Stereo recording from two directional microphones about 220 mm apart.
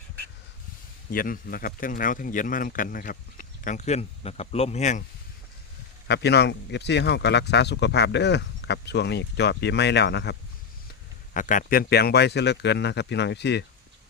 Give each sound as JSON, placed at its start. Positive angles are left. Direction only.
{"t": 1.1, "sound": "speech", "side_deg": 40}
{"t": 6.1, "sound": "speech", "side_deg": 50}
{"t": 11.3, "sound": "speech", "side_deg": 35}